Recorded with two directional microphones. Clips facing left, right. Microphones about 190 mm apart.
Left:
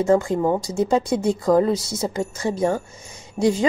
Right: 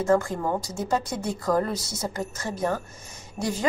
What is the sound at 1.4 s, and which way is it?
A woman's voice, 15° left (ahead or behind).